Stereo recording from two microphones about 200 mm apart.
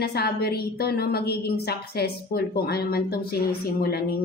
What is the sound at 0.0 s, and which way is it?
A woman's voice, 55° left (ahead or behind).